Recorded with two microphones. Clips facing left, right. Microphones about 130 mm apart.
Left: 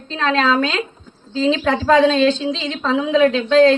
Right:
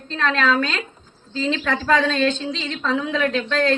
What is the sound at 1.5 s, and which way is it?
Speech, 25° left (ahead or behind).